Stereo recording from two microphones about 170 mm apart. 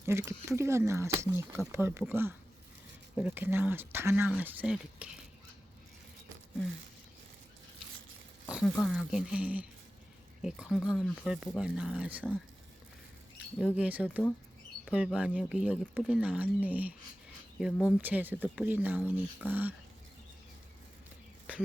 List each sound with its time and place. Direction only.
0.0 s speech: 15° right (ahead or behind)
8.4 s speech: centre (ahead or behind)
13.7 s speech: 10° right (ahead or behind)